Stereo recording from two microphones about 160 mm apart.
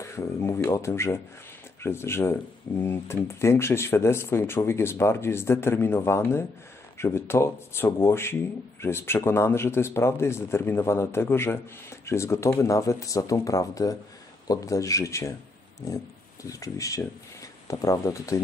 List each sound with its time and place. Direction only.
0.0 s speech: 20° left (ahead or behind)
16.4 s speech: 20° left (ahead or behind)